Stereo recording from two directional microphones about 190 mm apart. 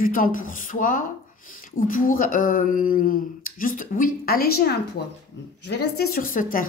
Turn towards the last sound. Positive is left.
turn(degrees=45)  # may be behind; listen again after turning